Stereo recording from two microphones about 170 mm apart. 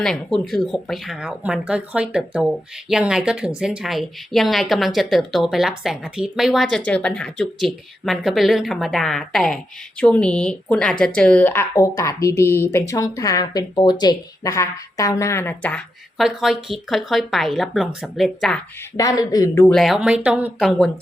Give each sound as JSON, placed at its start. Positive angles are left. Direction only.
{"t": 0.0, "sound": "speech", "side_deg": 5}
{"t": 18.9, "sound": "speech", "side_deg": 20}
{"t": 19.7, "sound": "speech", "side_deg": 0}